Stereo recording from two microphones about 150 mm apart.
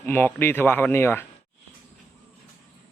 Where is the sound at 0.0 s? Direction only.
15° left (ahead or behind).